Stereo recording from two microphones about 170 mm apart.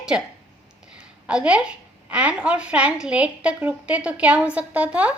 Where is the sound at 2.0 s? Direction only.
5° right (ahead or behind).